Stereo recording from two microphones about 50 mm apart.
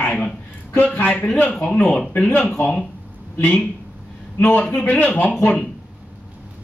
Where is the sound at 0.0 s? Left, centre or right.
Left.